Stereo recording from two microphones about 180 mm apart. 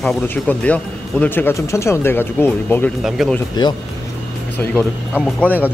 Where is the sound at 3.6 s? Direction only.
25° left (ahead or behind).